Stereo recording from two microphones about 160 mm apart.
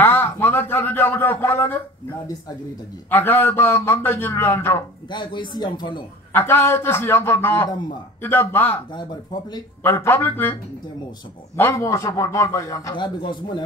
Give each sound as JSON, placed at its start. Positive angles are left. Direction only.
{"t": 0.0, "sound": "a sound", "side_deg": 15}
{"t": 3.1, "sound": "a man's voice", "side_deg": 15}
{"t": 5.1, "sound": "a man's voice", "side_deg": 30}
{"t": 6.3, "sound": "a man's voice", "side_deg": 15}
{"t": 8.9, "sound": "a man's voice", "side_deg": 25}
{"t": 9.8, "sound": "a man's voice", "side_deg": 15}
{"t": 12.9, "sound": "a man's voice", "side_deg": 30}